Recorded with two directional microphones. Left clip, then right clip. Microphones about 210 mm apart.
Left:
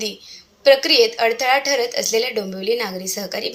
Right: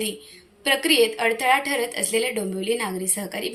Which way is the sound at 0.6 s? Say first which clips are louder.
Left 6 dB; 5° left (ahead or behind).